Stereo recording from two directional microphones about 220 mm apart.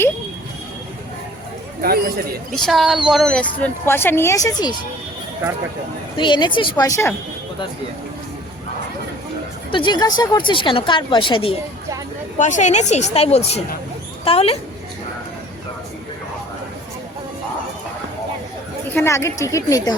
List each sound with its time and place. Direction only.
1.8 s a man's voice: 45° right (ahead or behind)
2.6 s a woman's voice: centre (ahead or behind)
6.1 s a woman's voice: 20° left (ahead or behind)
9.7 s a woman's voice: 20° left (ahead or behind)
12.4 s a woman's voice: 35° left (ahead or behind)
18.9 s speech: 15° left (ahead or behind)